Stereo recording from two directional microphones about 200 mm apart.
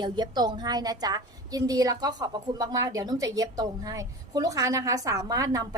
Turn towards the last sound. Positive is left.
turn(degrees=-15)  # may be behind; listen again after turning